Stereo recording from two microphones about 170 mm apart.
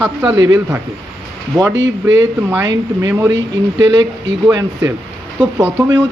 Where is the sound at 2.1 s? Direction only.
15° right (ahead or behind).